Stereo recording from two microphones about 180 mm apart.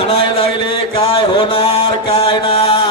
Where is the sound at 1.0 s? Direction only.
30° left (ahead or behind).